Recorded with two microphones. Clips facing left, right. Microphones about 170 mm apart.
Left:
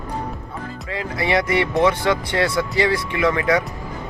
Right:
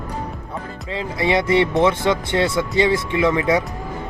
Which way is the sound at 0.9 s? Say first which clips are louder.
Right 1 dB; 25° right (ahead or behind).